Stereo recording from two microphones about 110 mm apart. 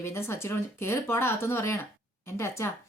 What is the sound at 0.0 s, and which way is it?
A woman's voice, 25° left (ahead or behind).